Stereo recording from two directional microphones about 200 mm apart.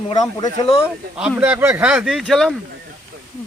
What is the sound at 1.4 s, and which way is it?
Speech, 10° right (ahead or behind).